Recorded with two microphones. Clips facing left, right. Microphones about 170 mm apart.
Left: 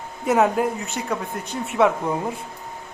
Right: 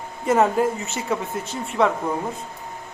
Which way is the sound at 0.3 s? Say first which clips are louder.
Even; centre (ahead or behind).